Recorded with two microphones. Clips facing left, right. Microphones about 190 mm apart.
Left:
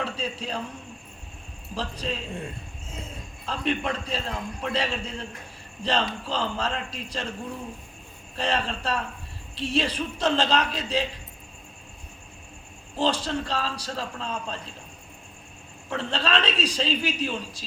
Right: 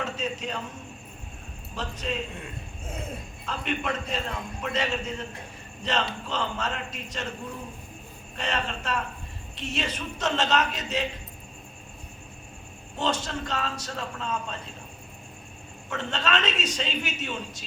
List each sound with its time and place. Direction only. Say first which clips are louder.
0.0 s a man's voice: even; 35° left (ahead or behind)
1.7 s a man's voice: left 1 dB; 35° left (ahead or behind)
8.4 s a man's voice: left 3 dB; 35° left (ahead or behind)
13.0 s a man's voice: left 3 dB; 30° left (ahead or behind)
15.9 s a man's voice: left 2 dB; 35° left (ahead or behind)